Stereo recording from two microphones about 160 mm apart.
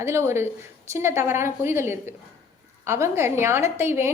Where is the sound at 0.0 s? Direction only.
15° right (ahead or behind).